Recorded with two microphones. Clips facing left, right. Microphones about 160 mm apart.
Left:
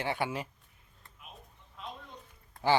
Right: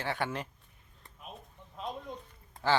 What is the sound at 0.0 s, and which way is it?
Speech, 15° left (ahead or behind).